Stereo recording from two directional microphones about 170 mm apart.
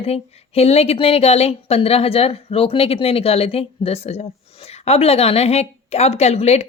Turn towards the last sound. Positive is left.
turn(degrees=40)  # may be behind; listen again after turning